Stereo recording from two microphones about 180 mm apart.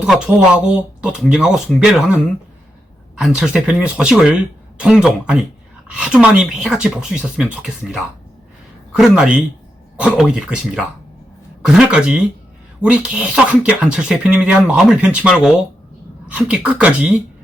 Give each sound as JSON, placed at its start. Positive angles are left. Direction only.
{"t": 0.0, "sound": "speech", "side_deg": -5}